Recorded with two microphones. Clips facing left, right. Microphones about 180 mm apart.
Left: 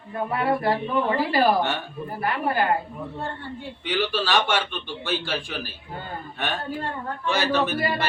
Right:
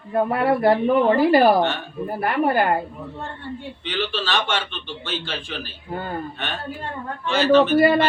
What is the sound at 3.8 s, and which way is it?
A man's voice, 10° left (ahead or behind).